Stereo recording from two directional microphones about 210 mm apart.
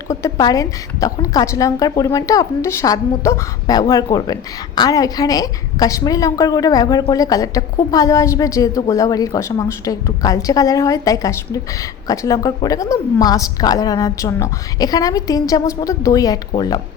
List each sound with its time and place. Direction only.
0.1 s a woman's voice: 15° left (ahead or behind)